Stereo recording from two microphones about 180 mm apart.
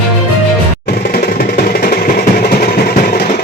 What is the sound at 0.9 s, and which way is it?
Percussion, 60° left (ahead or behind).